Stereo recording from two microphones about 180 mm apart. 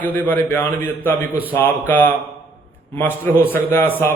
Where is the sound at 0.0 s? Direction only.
10° left (ahead or behind).